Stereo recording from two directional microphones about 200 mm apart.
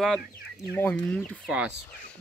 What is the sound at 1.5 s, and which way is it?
Speech, 5° right (ahead or behind).